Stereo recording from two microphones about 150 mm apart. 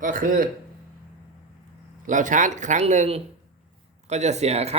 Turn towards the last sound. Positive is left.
turn(degrees=-45)  # may be behind; listen again after turning